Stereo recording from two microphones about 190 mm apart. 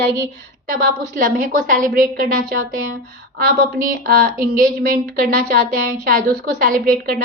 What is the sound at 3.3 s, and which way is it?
A woman's voice, 45° right (ahead or behind).